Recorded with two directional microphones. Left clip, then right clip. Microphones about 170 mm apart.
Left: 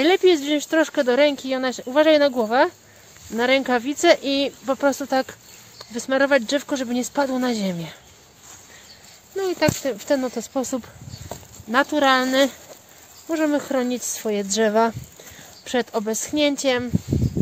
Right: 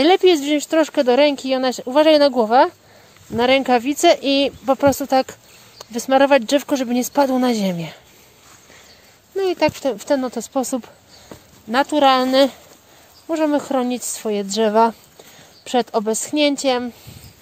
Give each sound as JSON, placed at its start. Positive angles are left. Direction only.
{"t": 0.0, "sound": "speech", "side_deg": -30}
{"t": 9.4, "sound": "speech", "side_deg": -30}